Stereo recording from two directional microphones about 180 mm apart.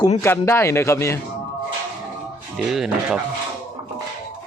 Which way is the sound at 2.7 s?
5° right (ahead or behind).